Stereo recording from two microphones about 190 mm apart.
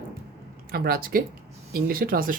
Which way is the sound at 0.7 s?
50° right (ahead or behind).